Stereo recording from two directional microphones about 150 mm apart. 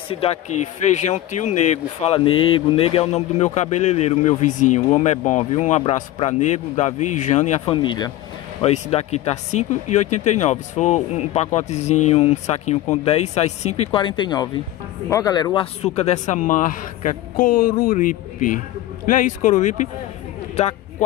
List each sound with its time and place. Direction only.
0.1 s speech: 40° left (ahead or behind)
2.1 s speech: 35° left (ahead or behind)
7.6 s speech: 35° left (ahead or behind)
8.6 s speech: 45° left (ahead or behind)